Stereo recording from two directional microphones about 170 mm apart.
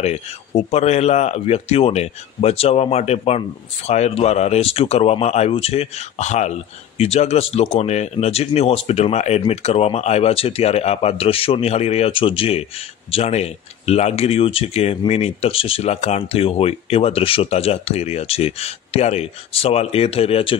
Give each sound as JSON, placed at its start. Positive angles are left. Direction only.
{"t": 0.0, "sound": "speech", "side_deg": 40}